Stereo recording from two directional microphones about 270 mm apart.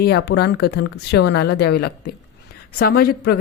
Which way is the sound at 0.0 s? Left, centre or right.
Left.